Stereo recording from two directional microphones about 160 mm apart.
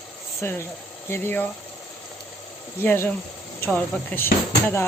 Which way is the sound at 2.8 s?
10° left (ahead or behind).